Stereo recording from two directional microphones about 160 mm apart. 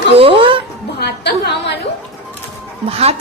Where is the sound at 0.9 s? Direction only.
90° left.